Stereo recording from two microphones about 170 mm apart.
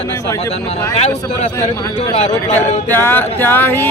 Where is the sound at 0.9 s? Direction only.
40° left (ahead or behind).